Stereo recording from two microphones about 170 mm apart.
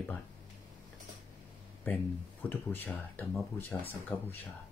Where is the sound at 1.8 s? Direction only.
10° left (ahead or behind).